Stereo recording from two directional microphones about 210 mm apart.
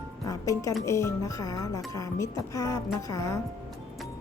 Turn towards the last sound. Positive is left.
turn(degrees=15)  # may be behind; listen again after turning